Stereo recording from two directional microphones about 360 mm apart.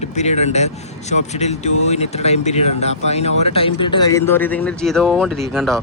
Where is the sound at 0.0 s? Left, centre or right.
Centre.